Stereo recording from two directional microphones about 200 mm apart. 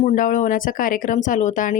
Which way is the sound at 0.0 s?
35° left (ahead or behind).